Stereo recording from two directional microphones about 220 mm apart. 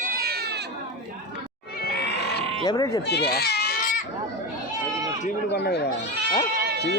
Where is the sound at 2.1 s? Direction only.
50° left (ahead or behind).